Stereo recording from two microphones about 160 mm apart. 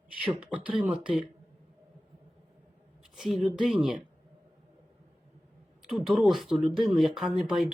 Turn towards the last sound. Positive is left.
turn(degrees=0)  # may be behind; listen again after turning